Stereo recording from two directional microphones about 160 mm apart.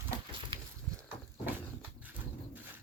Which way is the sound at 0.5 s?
30° right (ahead or behind).